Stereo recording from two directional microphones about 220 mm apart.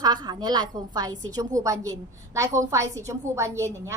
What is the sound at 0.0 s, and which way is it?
A woman's voice, 20° right (ahead or behind).